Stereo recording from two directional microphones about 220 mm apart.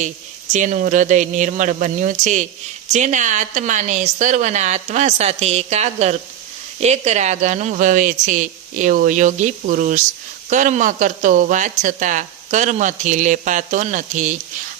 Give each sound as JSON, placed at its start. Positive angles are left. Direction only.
{"t": 0.5, "sound": "speech", "side_deg": -35}